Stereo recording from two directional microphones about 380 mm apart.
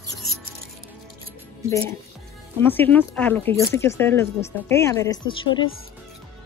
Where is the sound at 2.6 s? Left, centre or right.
Centre.